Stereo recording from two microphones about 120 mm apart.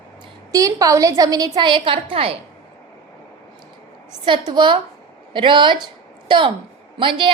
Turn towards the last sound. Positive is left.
turn(degrees=-45)  # may be behind; listen again after turning